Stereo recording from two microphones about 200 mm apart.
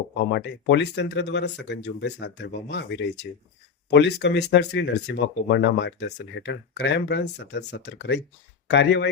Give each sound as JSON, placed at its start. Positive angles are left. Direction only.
{"t": 0.3, "sound": "speech", "side_deg": 60}